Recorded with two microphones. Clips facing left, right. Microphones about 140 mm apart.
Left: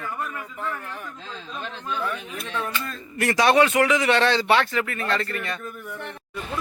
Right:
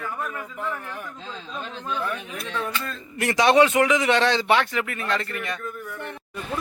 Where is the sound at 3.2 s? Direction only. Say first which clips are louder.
Right 1 dB; 20° right (ahead or behind).